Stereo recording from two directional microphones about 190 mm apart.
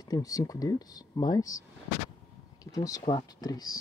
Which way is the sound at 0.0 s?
20° left (ahead or behind).